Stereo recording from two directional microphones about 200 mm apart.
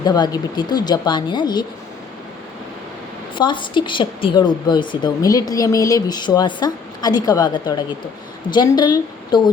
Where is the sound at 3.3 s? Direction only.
25° left (ahead or behind).